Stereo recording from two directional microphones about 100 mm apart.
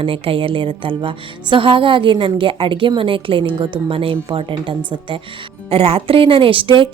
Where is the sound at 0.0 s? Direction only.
65° right (ahead or behind).